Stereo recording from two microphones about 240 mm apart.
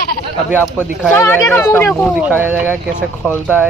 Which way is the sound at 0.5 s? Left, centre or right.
Centre.